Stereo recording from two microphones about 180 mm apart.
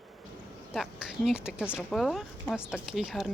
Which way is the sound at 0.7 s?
Centre (ahead or behind).